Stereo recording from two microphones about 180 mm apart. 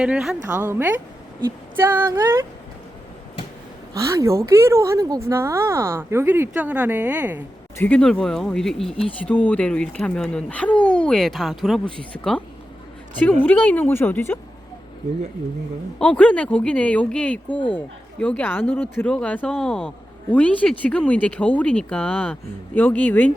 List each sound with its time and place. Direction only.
0.0 s a woman's voice: 5° right (ahead or behind)
3.9 s a woman's voice: 15° right (ahead or behind)
7.8 s speech: 5° left (ahead or behind)
13.4 s speech: 10° left (ahead or behind)
16.0 s speech: 5° left (ahead or behind)